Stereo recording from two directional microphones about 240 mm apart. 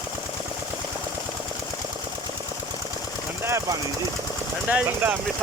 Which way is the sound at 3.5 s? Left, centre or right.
Centre.